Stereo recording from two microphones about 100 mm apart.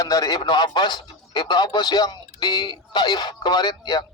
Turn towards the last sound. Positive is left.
turn(degrees=45)  # may be behind; listen again after turning